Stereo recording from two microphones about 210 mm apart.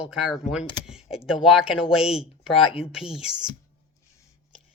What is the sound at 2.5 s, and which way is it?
Speech, 25° left (ahead or behind).